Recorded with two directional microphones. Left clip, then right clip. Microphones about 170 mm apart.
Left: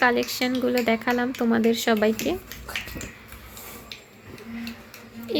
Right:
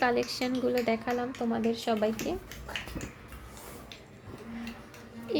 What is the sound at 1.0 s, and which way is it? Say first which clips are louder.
Speech: left 7 dB; 25° left (ahead or behind).